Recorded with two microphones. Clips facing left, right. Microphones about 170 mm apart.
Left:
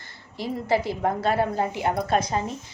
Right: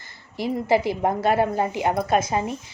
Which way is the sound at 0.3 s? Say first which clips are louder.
Right 3 dB; 15° right (ahead or behind).